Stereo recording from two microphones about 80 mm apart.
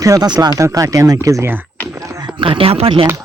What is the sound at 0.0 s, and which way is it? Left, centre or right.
Speech, right.